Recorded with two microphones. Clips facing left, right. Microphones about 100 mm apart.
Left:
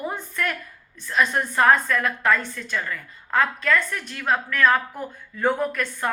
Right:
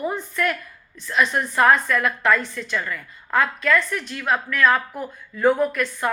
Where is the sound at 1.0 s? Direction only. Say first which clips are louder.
Right 1 dB; 40° left (ahead or behind).